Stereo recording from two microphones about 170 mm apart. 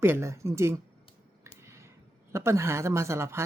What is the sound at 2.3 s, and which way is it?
Speech, 15° right (ahead or behind).